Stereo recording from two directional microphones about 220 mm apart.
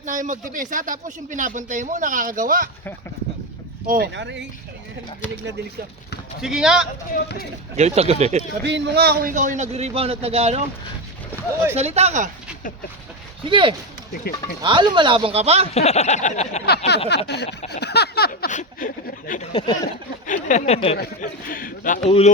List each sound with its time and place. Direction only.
0.0 s speech: 35° right (ahead or behind)
3.8 s speech: 40° right (ahead or behind)
6.4 s a man's voice: 5° right (ahead or behind)
7.1 s speech: 45° left (ahead or behind)
7.8 s speech: 30° right (ahead or behind)
8.6 s speech: 50° right (ahead or behind); by 10.6 s 25° right (ahead or behind)
11.8 s speech: 30° right (ahead or behind)
13.4 s speech: 20° right (ahead or behind)
15.7 s a man's voice: 30° left (ahead or behind)
16.6 s speech: 50° left (ahead or behind)
19.4 s a sound: 20° left (ahead or behind)
20.2 s a man's voice: 35° left (ahead or behind)
21.0 s a man's voice: 40° left (ahead or behind)